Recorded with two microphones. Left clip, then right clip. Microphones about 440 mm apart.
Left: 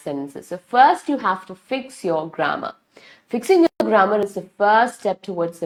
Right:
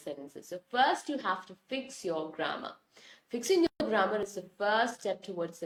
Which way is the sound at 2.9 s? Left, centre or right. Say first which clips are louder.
Left 12 dB; left.